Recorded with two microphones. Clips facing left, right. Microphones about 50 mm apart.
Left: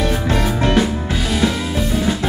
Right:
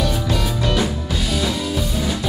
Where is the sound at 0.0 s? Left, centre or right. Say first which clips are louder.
Left 3 dB; left.